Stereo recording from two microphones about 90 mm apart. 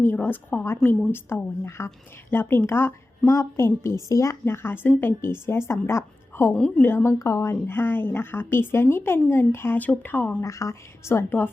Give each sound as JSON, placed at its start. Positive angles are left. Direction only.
{"t": 0.0, "sound": "speech", "side_deg": 20}
{"t": 0.8, "sound": "a woman's voice", "side_deg": 5}
{"t": 1.3, "sound": "speech", "side_deg": 25}
{"t": 6.5, "sound": "a woman's voice", "side_deg": 10}
{"t": 6.8, "sound": "a woman's voice", "side_deg": 30}
{"t": 7.7, "sound": "speech", "side_deg": 25}
{"t": 10.4, "sound": "a woman's voice", "side_deg": 35}